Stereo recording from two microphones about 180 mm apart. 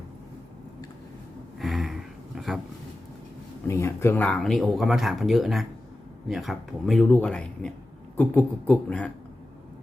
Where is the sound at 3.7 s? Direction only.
15° left (ahead or behind).